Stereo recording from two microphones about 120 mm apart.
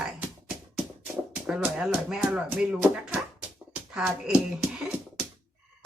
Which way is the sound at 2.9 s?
5° right (ahead or behind).